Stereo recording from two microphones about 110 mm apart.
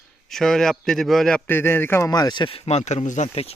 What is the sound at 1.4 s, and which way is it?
Speech, 20° left (ahead or behind).